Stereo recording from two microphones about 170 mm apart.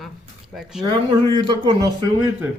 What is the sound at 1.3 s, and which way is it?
Speech, 30° right (ahead or behind).